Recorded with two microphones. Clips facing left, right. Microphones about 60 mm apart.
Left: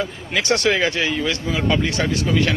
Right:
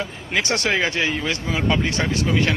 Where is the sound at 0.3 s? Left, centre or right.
Right.